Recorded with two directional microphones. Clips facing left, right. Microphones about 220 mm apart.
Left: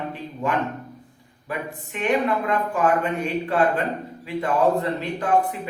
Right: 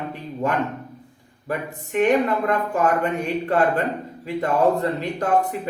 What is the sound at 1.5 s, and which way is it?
Speech, 45° right (ahead or behind).